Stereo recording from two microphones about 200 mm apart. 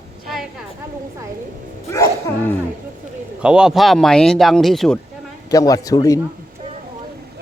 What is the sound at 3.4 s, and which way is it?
Speech, 5° right (ahead or behind).